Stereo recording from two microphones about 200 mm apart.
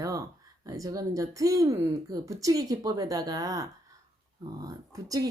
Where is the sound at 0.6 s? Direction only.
15° right (ahead or behind).